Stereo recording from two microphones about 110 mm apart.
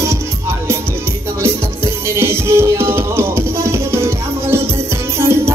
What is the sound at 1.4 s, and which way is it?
Music, 20° right (ahead or behind).